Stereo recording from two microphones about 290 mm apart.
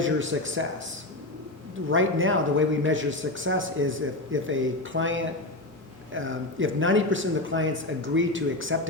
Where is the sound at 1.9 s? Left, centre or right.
Right.